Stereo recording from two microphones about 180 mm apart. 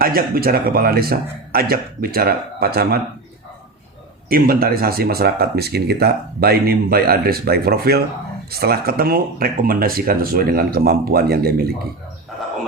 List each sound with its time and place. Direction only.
0.0 s speech: 55° right (ahead or behind)
4.3 s speech: 55° right (ahead or behind)